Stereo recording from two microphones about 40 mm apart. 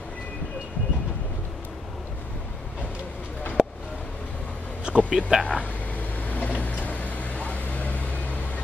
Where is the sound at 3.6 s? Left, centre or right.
Centre.